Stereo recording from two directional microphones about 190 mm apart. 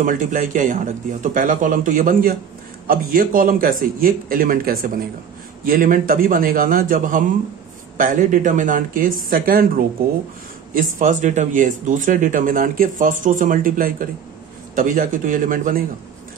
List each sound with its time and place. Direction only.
0.0 s speech: 45° right (ahead or behind)